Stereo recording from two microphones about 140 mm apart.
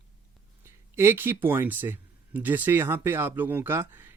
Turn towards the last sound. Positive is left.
turn(degrees=-15)  # may be behind; listen again after turning